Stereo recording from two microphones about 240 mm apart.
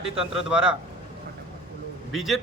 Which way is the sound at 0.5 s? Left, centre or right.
Centre.